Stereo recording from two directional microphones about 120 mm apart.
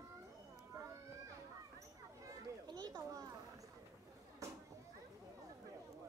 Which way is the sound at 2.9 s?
30° right (ahead or behind).